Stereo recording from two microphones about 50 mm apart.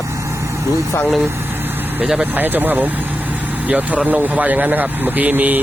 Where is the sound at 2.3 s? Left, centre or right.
Right.